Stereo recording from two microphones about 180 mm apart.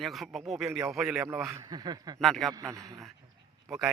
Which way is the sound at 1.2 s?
15° right (ahead or behind).